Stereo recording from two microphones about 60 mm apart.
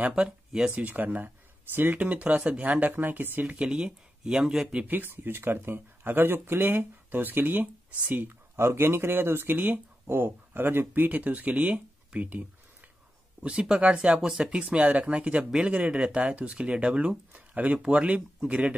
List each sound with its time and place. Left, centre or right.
0.0 s speech: centre
0.7 s speech: right
2.9 s speech: right
3.5 s speech: centre
4.8 s speech: right
8.5 s speech: right; by 18.8 s centre